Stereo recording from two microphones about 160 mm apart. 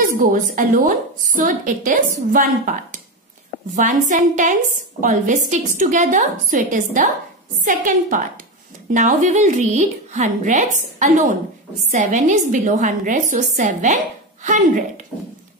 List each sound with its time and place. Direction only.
0.0 s a woman's voice: 60° right (ahead or behind)